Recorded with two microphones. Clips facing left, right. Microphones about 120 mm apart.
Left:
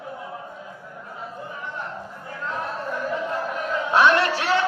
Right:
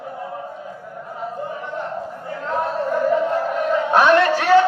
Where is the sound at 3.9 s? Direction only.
55° right (ahead or behind).